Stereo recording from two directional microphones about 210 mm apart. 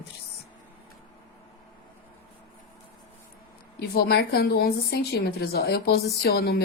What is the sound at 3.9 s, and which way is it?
Speech, 50° left (ahead or behind).